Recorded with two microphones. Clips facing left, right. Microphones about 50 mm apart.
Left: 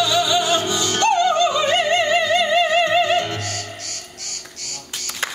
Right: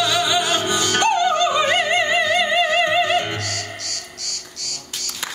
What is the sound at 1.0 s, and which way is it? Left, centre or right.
Music, right.